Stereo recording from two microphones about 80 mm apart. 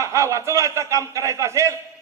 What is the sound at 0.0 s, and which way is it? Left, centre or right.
A man's voice, right.